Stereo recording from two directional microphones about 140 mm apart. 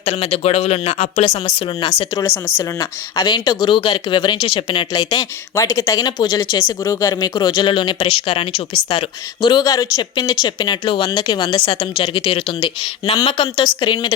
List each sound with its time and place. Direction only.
0.0 s speech: 50° left (ahead or behind)
2.1 s speech: 15° left (ahead or behind)
3.2 s speech: 30° left (ahead or behind)